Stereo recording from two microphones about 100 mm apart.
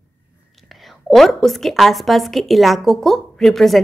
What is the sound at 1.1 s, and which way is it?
A woman's voice, centre (ahead or behind).